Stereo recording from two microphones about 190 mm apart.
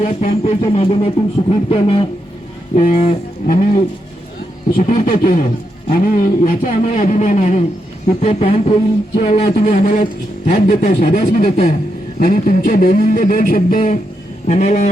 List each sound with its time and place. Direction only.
0.0 s speech: 40° left (ahead or behind)